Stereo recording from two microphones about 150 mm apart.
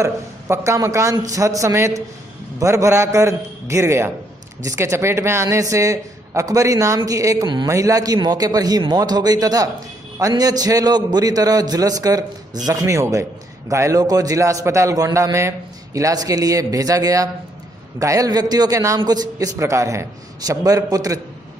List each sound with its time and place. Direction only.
0.0 s a man's voice: 20° right (ahead or behind)